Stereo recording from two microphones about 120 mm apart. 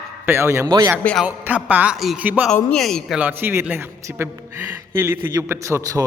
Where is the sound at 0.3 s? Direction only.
20° right (ahead or behind).